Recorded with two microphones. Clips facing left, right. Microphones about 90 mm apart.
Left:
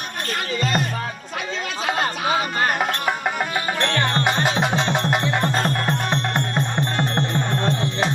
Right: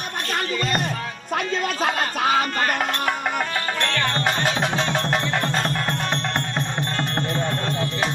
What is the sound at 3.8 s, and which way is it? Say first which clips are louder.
Music: left 3 dB; 30° left (ahead or behind).